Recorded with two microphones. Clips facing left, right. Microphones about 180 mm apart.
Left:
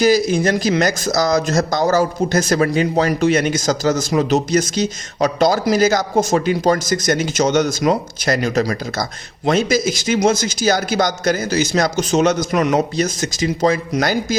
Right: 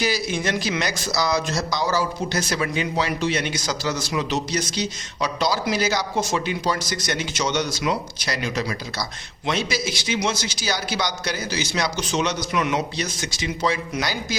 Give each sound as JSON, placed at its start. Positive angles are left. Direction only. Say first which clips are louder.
{"t": 0.0, "sound": "a man's voice", "louder": "left 10 dB", "side_deg": 45}